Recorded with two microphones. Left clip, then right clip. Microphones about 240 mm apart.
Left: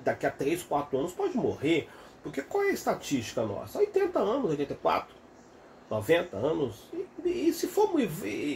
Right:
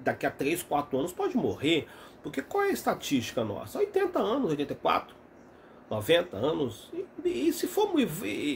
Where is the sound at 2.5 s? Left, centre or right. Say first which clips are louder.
Even; centre.